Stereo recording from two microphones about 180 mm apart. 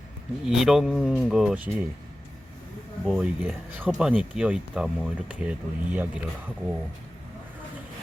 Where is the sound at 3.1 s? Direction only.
5° right (ahead or behind).